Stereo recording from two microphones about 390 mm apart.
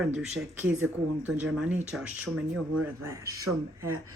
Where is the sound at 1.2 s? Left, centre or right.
Centre.